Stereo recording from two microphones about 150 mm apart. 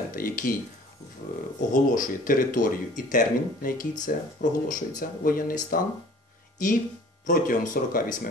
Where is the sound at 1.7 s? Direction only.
65° left (ahead or behind).